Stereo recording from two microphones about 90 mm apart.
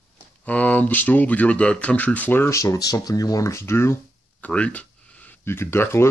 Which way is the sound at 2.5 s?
35° left (ahead or behind).